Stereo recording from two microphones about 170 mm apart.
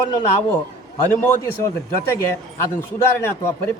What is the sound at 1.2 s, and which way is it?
Speech, 15° left (ahead or behind).